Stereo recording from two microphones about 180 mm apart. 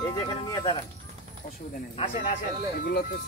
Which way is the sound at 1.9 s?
45° left (ahead or behind).